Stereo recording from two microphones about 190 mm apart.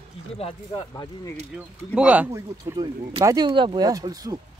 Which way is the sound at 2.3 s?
20° right (ahead or behind).